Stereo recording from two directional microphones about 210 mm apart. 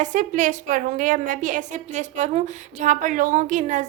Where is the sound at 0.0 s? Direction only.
35° right (ahead or behind).